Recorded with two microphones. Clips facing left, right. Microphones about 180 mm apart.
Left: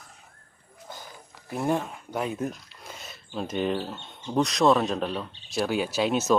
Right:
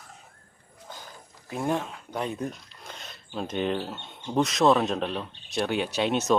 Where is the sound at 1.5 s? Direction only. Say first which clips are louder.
Left 1 dB; 5° left (ahead or behind).